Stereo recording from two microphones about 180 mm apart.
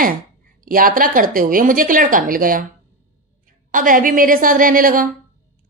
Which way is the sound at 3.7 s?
50° right (ahead or behind).